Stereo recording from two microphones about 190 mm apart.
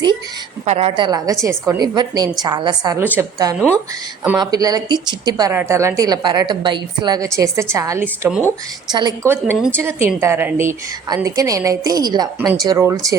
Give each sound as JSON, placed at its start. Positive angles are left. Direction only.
{"t": 0.6, "sound": "a woman's voice", "side_deg": -35}
{"t": 8.9, "sound": "a woman's voice", "side_deg": -20}